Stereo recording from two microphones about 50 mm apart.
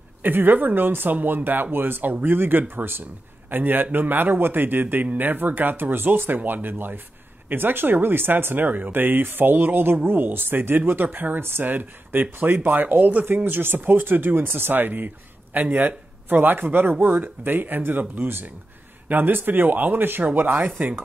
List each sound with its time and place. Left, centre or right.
0.2 s speech: right